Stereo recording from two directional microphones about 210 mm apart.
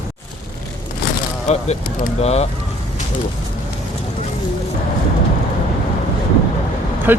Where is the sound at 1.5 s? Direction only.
35° left (ahead or behind).